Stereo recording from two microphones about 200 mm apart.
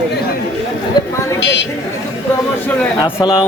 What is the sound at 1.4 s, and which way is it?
Speech, 60° left (ahead or behind).